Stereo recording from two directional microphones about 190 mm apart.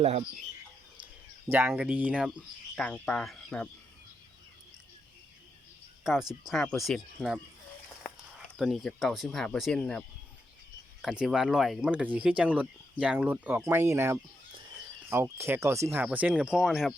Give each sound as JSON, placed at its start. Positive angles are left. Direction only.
{"t": 0.0, "sound": "speech", "side_deg": -35}
{"t": 1.5, "sound": "speech", "side_deg": -10}
{"t": 6.4, "sound": "speech", "side_deg": 0}
{"t": 8.5, "sound": "speech", "side_deg": 0}
{"t": 11.0, "sound": "speech", "side_deg": -5}